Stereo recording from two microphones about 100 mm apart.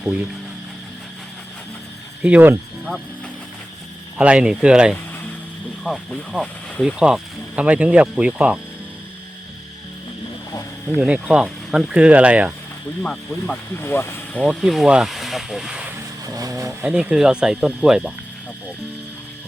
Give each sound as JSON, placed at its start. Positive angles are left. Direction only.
{"t": 0.0, "sound": "speech", "side_deg": -15}
{"t": 2.2, "sound": "speech", "side_deg": -15}
{"t": 4.2, "sound": "speech", "side_deg": -10}
{"t": 10.8, "sound": "speech", "side_deg": -10}
{"t": 13.0, "sound": "speech", "side_deg": 10}
{"t": 13.7, "sound": "speech", "side_deg": 25}
{"t": 14.6, "sound": "speech", "side_deg": 0}
{"t": 16.2, "sound": "speech", "side_deg": -35}
{"t": 16.8, "sound": "speech", "side_deg": -10}